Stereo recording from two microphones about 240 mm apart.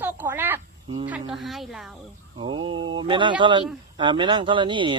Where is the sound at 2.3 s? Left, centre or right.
Centre.